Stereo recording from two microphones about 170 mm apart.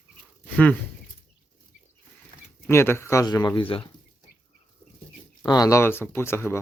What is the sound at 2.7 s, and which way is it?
Speech, 15° left (ahead or behind).